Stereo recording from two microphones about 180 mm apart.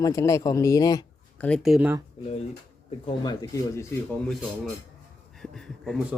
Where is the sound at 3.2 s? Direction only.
20° left (ahead or behind).